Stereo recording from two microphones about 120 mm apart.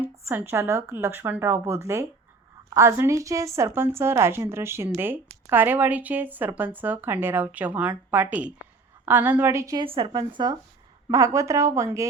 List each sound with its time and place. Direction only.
0.0 s a woman's voice: 15° right (ahead or behind)
9.7 s speech: 50° right (ahead or behind)
11.1 s a woman's voice: 25° right (ahead or behind)